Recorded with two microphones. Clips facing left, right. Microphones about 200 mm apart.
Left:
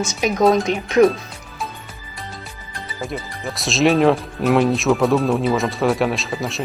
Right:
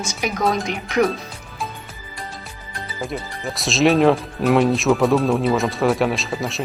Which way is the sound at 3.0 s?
Centre (ahead or behind).